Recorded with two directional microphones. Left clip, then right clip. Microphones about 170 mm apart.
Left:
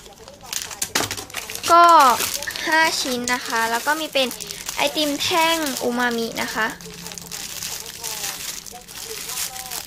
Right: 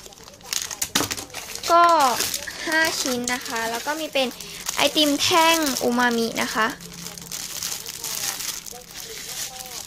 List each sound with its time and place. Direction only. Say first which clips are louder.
1.7 s speech: left 4 dB; centre (ahead or behind)
2.6 s speech: left 3 dB; 15° right (ahead or behind)
4.1 s speech: left 2 dB; 10° right (ahead or behind)
4.7 s a child's voice: right 2 dB; 30° right (ahead or behind)